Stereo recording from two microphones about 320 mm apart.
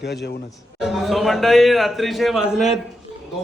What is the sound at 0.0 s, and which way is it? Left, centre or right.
Speech, left.